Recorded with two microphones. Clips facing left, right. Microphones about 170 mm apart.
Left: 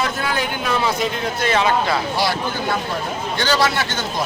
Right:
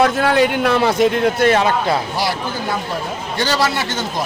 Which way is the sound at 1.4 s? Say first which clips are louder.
Right 4 dB; 50° right (ahead or behind).